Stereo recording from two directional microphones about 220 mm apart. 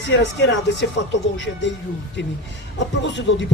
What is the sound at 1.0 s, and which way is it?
Speech, 50° left (ahead or behind).